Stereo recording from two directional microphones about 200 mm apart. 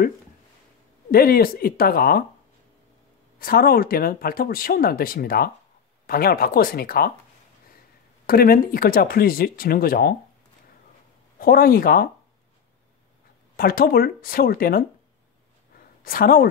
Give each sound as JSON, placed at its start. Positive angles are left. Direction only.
{"t": 1.1, "sound": "speech", "side_deg": 50}
{"t": 3.3, "sound": "speech", "side_deg": 45}
{"t": 8.3, "sound": "speech", "side_deg": 50}
{"t": 11.3, "sound": "speech", "side_deg": 45}
{"t": 13.6, "sound": "speech", "side_deg": 45}
{"t": 15.7, "sound": "a sound", "side_deg": 45}